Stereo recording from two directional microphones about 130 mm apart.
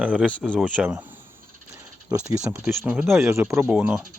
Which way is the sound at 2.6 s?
Centre (ahead or behind).